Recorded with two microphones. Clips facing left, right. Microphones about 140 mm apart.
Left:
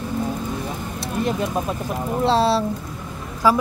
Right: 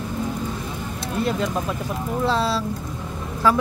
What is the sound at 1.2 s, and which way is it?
Speech, 20° left (ahead or behind).